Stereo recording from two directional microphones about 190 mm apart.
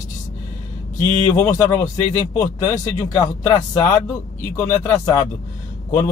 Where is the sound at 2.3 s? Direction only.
40° left (ahead or behind).